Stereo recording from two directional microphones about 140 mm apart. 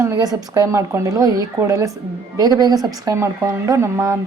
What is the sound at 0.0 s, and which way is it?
Speech, 20° right (ahead or behind).